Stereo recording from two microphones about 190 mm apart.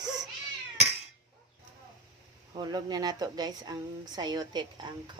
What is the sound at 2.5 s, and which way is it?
Speech, 20° right (ahead or behind).